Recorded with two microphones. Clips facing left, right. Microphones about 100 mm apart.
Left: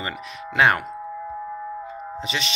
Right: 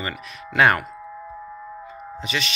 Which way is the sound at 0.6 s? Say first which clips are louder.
Right 1 dB; 15° left (ahead or behind).